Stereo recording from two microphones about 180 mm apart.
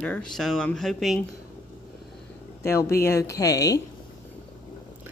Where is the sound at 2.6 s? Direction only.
15° left (ahead or behind).